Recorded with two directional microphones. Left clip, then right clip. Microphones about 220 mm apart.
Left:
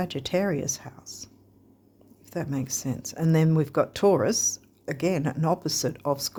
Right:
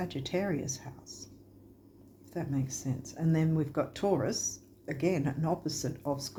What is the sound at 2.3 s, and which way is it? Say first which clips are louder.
Speech: left 6 dB; 50° left (ahead or behind).